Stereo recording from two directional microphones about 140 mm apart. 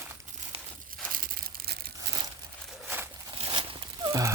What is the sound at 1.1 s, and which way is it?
Crumpling, 90° right.